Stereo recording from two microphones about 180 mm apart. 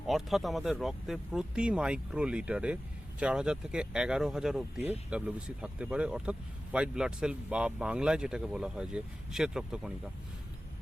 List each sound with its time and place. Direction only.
0.1 s speech: centre (ahead or behind)